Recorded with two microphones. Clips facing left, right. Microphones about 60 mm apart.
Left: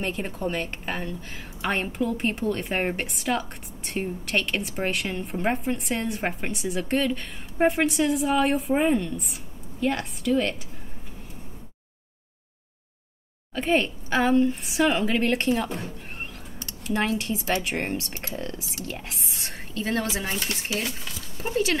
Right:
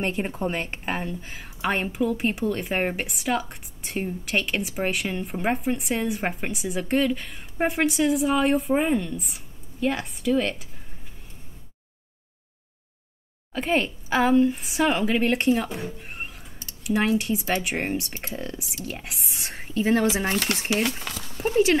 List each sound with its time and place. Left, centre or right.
0.0 s a woman's voice: right
1.3 s a woman's voice: centre
13.6 s a woman's voice: centre
20.2 s speech: right